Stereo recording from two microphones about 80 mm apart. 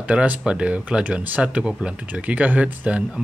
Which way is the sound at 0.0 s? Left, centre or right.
Centre.